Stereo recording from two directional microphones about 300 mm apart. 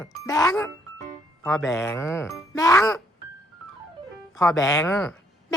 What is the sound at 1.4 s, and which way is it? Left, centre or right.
Speech, centre.